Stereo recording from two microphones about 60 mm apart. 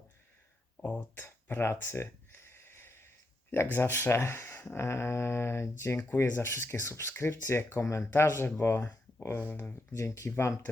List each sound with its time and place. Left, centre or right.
0.8 s speech: left
1.5 s a sound: left
3.5 s speech: left
9.9 s speech: left